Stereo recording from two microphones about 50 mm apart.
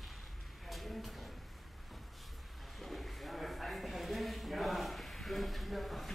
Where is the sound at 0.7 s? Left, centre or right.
Centre.